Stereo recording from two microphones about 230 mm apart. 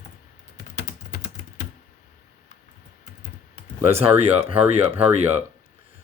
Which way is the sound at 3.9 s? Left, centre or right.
Right.